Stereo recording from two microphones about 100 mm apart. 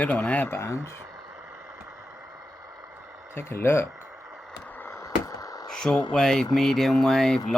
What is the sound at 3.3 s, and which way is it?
Speech, 25° left (ahead or behind).